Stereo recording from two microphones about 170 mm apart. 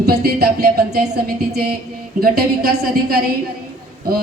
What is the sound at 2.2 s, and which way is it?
Speech, 60° right (ahead or behind).